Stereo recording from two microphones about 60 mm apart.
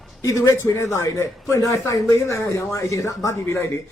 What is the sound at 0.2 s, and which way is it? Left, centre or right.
Speech, left.